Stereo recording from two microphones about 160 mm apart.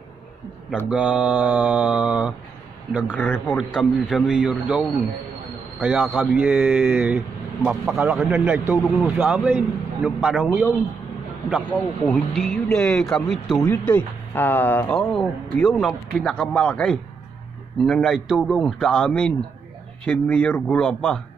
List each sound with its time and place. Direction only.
0.8 s a man's voice: 5° right (ahead or behind)
3.1 s speech: 10° left (ahead or behind)
3.5 s a man's voice: 5° right (ahead or behind)
8.8 s speech: centre (ahead or behind)
9.2 s a man's voice: 10° right (ahead or behind)
13.6 s speech: 15° left (ahead or behind)